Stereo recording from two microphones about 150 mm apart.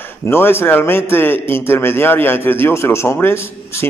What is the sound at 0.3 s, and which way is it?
A man's voice, 15° left (ahead or behind).